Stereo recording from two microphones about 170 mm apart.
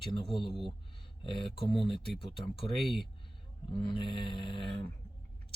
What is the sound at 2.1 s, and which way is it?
Speech, centre (ahead or behind).